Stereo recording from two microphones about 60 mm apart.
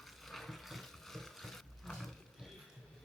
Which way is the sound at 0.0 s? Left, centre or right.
Centre.